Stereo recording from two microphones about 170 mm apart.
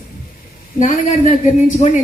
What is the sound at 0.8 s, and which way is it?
A woman's voice, 40° left (ahead or behind).